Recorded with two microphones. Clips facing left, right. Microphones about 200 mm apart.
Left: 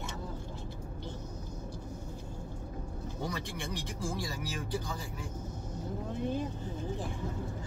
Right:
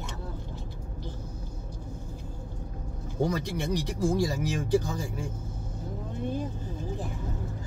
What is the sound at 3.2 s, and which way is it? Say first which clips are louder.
Speech: right 7 dB; 40° right (ahead or behind).